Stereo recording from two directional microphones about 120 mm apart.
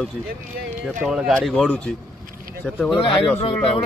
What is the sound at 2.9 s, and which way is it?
Speech, 45° left (ahead or behind).